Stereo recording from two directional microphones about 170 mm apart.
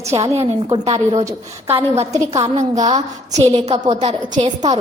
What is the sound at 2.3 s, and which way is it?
A woman's voice, 40° right (ahead or behind).